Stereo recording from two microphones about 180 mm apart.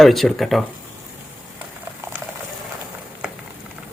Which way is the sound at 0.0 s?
Centre (ahead or behind).